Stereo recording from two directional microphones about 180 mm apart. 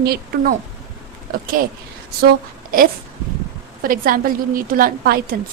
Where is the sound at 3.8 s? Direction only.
50° right (ahead or behind).